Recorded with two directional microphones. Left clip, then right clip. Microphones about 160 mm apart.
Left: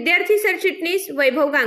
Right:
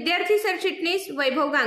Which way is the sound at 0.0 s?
20° left (ahead or behind).